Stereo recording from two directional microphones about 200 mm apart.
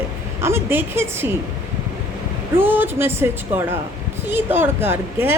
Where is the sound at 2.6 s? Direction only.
10° right (ahead or behind).